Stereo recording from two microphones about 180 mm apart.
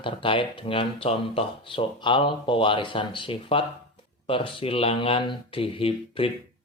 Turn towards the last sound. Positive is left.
turn(degrees=30)  # may be behind; listen again after turning